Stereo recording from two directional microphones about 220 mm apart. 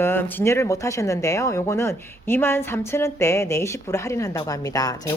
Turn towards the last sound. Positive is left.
turn(degrees=15)  # may be behind; listen again after turning